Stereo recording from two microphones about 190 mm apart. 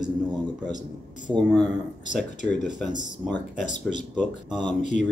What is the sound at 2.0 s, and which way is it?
Speech, 40° left (ahead or behind).